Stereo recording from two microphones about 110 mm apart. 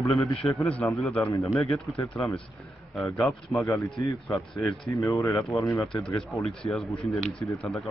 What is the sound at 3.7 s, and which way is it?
Speech, 30° left (ahead or behind).